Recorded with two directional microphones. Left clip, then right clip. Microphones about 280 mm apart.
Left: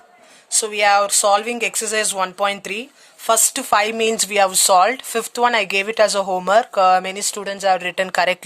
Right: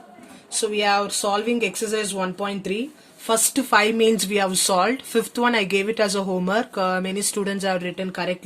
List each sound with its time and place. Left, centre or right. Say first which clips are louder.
0.6 s speech: left 5 dB; left